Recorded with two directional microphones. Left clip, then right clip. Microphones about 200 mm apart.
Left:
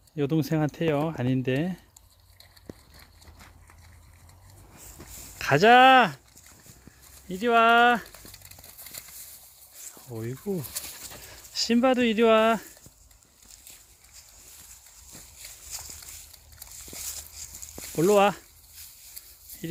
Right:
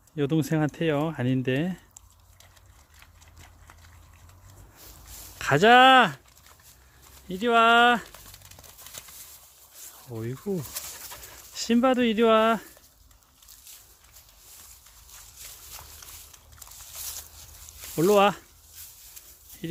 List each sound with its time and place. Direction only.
0.2 s speech: 5° left (ahead or behind)
5.4 s speech: 5° left (ahead or behind)
7.3 s a sound: 5° left (ahead or behind)
9.8 s speech: centre (ahead or behind)
17.8 s speech: centre (ahead or behind)